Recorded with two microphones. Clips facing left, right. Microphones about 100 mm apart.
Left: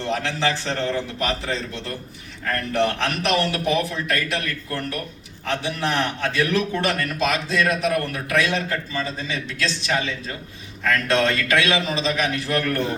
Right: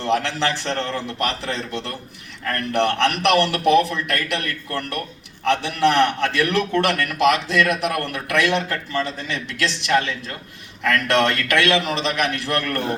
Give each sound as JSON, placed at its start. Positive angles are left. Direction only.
{"t": 0.0, "sound": "a man's voice", "side_deg": -70}